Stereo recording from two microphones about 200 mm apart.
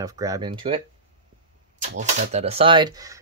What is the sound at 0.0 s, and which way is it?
Speech, 20° right (ahead or behind).